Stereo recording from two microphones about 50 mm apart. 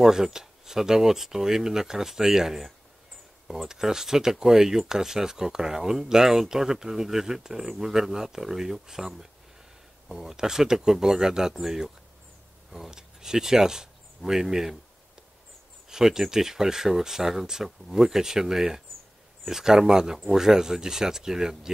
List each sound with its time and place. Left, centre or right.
0.0 s speech: centre
15.9 s speech: centre